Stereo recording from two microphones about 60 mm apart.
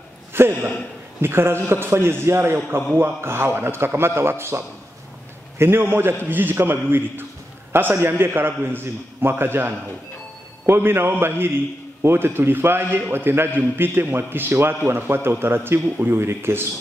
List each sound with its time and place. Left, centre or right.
0.3 s a man's voice: right